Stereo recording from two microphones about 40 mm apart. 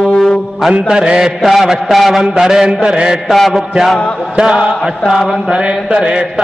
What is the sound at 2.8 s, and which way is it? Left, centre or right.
Mantra, right.